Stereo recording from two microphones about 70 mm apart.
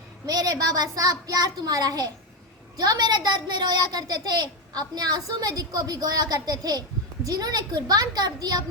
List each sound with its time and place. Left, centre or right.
0.3 s a child's voice: right